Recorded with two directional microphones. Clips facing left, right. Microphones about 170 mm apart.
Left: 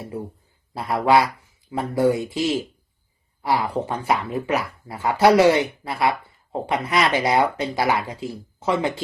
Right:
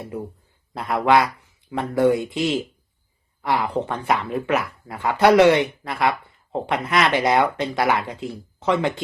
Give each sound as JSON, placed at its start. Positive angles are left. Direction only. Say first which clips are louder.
{"t": 0.7, "sound": "speech", "louder": "even", "side_deg": 0}